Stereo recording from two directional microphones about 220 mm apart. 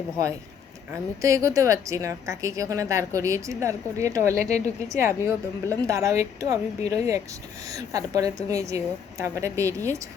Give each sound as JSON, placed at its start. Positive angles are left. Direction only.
{"t": 0.9, "sound": "a woman's voice", "side_deg": -15}